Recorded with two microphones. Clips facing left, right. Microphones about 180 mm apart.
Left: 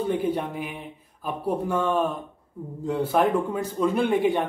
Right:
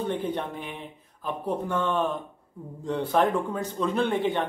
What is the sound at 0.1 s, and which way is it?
Speech, 10° left (ahead or behind).